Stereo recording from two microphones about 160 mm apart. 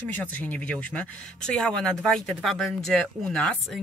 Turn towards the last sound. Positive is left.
turn(degrees=5)  # may be behind; listen again after turning